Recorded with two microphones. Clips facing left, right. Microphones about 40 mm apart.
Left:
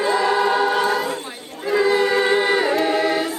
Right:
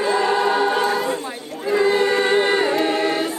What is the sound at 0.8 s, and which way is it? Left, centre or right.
Choir, left.